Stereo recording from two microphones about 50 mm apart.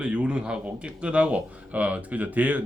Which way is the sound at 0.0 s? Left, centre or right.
Right.